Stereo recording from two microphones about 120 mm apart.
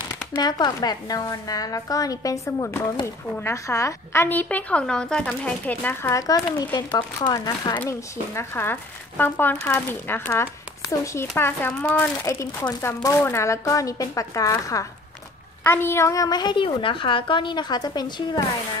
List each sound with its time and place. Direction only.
0.4 s a woman's voice: 35° left (ahead or behind); by 6.1 s 15° left (ahead or behind)
6.1 s a woman's voice: 30° left (ahead or behind)
7.7 s a woman's voice: 20° left (ahead or behind); by 18.4 s 35° left (ahead or behind)